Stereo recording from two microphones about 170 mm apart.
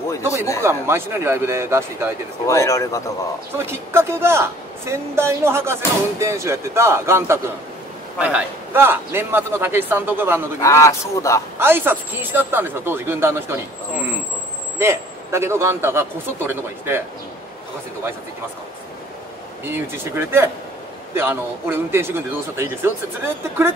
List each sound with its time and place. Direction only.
0.7 s speech: 15° right (ahead or behind)
2.4 s a man's voice: 15° left (ahead or behind)
3.5 s speech: 15° right (ahead or behind)
10.6 s a man's voice: 15° left (ahead or behind)
11.5 s speech: 10° right (ahead or behind)
19.6 s speech: 15° right (ahead or behind)